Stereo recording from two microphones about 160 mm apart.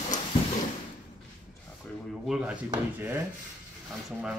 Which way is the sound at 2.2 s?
5° right (ahead or behind).